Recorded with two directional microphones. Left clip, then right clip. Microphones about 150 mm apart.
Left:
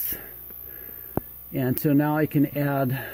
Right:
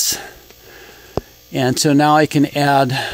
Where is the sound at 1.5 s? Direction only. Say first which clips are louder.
Right 9 dB; 40° right (ahead or behind).